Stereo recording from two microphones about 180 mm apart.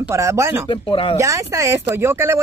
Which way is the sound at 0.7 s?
30° left (ahead or behind).